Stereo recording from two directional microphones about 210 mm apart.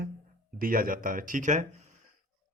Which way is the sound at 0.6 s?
45° right (ahead or behind).